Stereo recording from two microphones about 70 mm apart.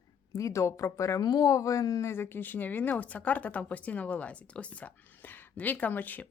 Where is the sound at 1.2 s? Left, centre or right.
Left.